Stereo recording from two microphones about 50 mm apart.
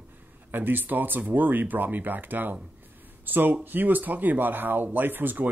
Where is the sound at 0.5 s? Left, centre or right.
Right.